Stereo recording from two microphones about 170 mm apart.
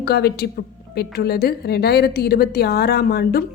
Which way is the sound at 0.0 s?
70° left (ahead or behind).